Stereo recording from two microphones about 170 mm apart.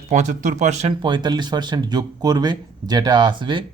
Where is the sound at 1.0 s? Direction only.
25° right (ahead or behind).